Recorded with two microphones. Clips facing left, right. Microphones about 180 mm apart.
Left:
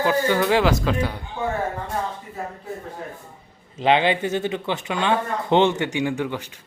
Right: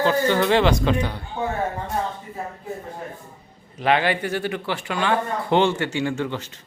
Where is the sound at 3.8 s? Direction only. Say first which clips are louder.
Left 2 dB; 25° left (ahead or behind).